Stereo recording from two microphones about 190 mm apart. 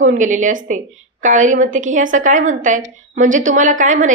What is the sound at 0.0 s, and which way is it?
A woman's voice, 40° right (ahead or behind).